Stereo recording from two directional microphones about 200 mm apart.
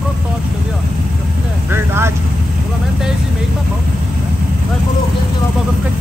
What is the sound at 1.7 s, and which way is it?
Speech, 10° right (ahead or behind).